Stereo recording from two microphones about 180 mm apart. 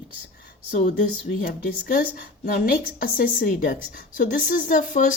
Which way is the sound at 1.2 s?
55° left (ahead or behind).